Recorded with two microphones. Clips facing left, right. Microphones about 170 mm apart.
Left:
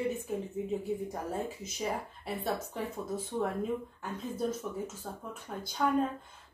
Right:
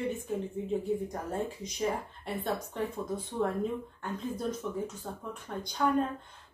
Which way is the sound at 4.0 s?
5° left (ahead or behind).